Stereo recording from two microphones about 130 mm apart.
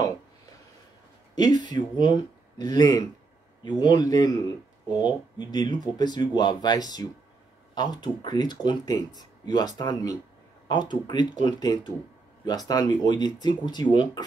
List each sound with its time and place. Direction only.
1.3 s speech: 30° left (ahead or behind)